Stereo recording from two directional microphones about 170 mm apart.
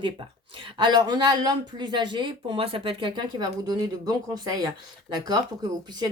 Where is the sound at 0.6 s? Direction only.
25° right (ahead or behind).